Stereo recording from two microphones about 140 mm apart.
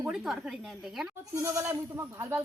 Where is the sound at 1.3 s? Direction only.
20° right (ahead or behind).